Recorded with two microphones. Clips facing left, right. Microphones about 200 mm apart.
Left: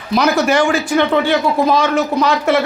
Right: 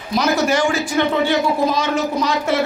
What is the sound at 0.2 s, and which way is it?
A man's voice, 65° left (ahead or behind).